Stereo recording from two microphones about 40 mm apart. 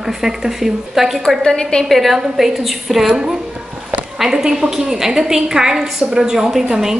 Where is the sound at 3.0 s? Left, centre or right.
Centre.